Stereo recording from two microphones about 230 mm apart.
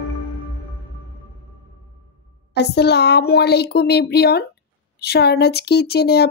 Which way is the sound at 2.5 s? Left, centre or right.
Left.